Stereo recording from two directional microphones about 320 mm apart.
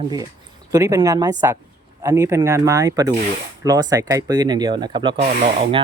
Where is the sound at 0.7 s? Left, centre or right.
Centre.